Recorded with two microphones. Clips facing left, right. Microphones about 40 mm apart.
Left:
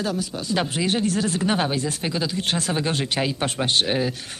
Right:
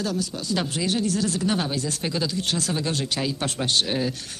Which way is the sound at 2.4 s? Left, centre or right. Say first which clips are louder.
Left 2 dB; left.